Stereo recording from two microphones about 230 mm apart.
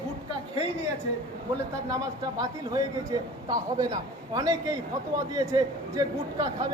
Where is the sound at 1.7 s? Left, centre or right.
Centre.